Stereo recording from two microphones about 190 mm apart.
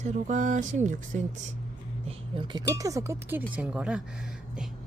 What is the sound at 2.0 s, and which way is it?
Speech, 25° right (ahead or behind).